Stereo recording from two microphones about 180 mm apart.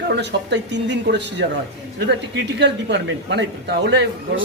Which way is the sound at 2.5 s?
75° right (ahead or behind).